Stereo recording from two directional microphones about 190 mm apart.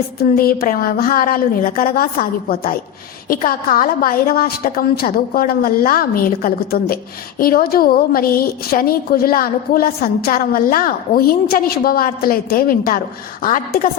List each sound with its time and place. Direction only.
0.2 s a woman's voice: 50° left (ahead or behind)